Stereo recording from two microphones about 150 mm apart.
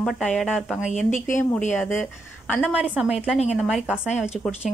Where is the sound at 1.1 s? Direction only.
60° left (ahead or behind).